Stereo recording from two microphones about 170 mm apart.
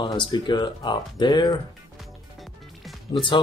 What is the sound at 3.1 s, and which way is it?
Speech, 30° left (ahead or behind).